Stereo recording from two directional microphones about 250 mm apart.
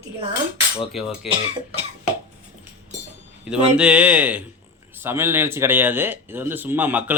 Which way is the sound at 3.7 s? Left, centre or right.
Centre.